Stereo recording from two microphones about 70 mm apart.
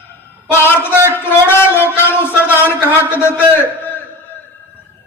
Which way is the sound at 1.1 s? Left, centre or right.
Left.